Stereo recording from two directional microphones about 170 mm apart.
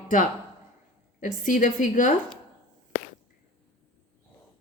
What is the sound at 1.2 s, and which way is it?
Speech, 50° left (ahead or behind).